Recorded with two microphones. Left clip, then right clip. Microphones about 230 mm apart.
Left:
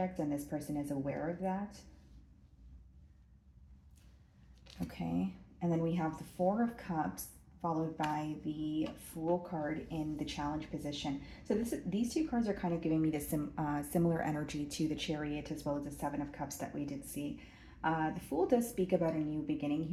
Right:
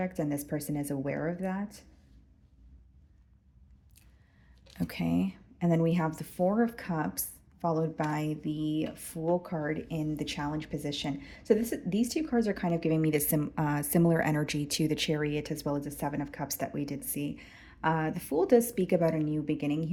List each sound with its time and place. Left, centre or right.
0.0 s speech: right
4.9 s speech: right